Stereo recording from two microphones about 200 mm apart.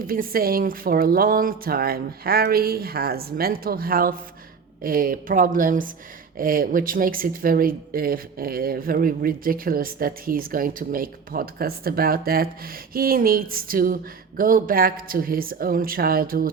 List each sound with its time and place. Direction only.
0.0 s speech: 45° right (ahead or behind)